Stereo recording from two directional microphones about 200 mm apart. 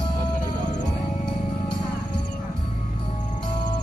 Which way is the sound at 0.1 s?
20° left (ahead or behind).